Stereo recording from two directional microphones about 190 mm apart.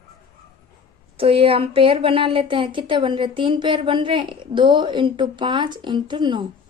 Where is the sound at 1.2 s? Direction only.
30° right (ahead or behind).